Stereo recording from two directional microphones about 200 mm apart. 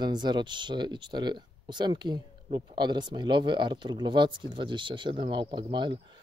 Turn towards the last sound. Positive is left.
turn(degrees=-25)  # may be behind; listen again after turning